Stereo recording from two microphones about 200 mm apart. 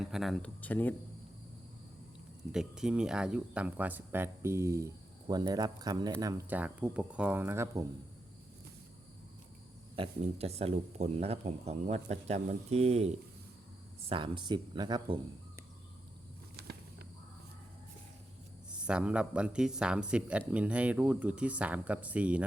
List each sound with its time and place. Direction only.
0.0 s speech: centre (ahead or behind)
2.5 s speech: 5° right (ahead or behind)
9.9 s speech: 30° right (ahead or behind)
16.6 s a sound: 55° right (ahead or behind)
18.7 s speech: 5° right (ahead or behind)